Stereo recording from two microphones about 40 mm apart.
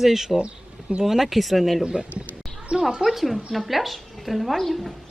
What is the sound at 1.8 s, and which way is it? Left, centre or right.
A woman's voice, centre.